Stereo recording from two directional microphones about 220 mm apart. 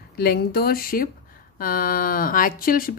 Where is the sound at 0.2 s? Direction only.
45° left (ahead or behind).